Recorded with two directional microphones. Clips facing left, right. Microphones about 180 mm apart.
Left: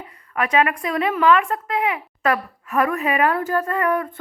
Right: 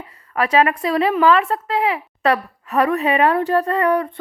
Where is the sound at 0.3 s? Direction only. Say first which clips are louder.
Right 3 dB; 35° right (ahead or behind).